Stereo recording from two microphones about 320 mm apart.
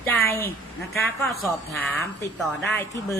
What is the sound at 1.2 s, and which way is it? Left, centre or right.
Speech, centre.